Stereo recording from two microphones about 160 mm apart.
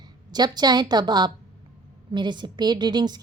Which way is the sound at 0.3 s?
25° right (ahead or behind).